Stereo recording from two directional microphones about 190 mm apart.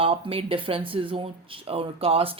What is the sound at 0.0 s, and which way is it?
Speech, 30° right (ahead or behind).